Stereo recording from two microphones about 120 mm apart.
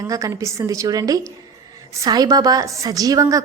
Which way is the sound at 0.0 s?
30° right (ahead or behind).